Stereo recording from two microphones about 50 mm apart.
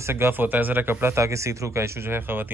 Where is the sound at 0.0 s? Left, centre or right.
Right.